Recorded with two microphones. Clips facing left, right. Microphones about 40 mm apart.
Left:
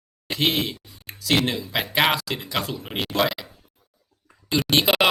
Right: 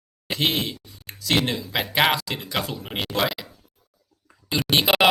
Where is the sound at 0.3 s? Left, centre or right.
Centre.